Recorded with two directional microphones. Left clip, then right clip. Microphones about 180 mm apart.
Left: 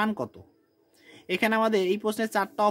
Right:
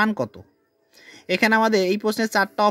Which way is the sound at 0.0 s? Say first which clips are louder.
Right 6 dB; 35° right (ahead or behind).